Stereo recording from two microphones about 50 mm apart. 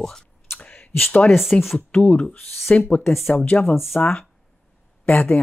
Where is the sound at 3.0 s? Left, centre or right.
Centre.